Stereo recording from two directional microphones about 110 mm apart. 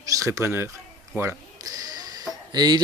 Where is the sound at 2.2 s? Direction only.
40° right (ahead or behind).